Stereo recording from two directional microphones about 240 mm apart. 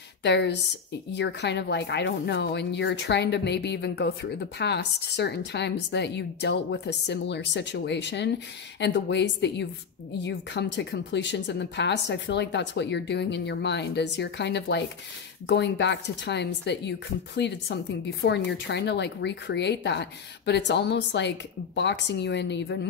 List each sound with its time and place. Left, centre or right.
0.2 s speech: left